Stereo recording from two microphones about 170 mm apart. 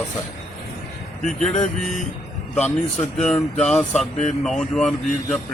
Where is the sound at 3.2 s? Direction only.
5° left (ahead or behind).